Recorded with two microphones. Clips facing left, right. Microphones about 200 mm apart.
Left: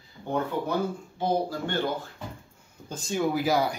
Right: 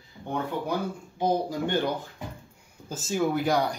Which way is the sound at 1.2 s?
15° right (ahead or behind).